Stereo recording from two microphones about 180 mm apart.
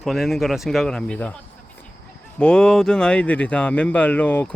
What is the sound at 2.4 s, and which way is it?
Speech, 5° left (ahead or behind).